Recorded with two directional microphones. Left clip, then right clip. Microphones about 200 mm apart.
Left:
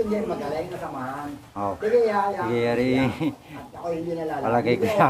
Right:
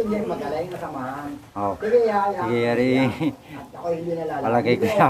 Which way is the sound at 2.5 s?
5° right (ahead or behind).